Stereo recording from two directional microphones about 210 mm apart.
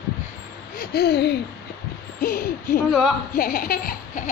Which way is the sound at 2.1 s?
45° left (ahead or behind).